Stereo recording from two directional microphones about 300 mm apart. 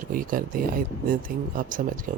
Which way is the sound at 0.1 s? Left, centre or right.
Right.